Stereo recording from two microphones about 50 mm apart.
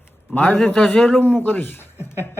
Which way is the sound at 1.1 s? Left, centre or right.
Left.